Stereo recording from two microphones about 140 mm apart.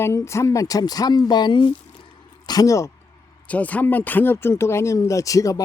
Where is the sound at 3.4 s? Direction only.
10° left (ahead or behind).